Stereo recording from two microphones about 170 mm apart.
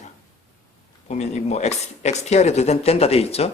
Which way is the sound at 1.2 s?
40° left (ahead or behind).